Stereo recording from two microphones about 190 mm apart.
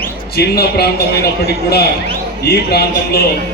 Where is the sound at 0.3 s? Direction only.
55° left (ahead or behind).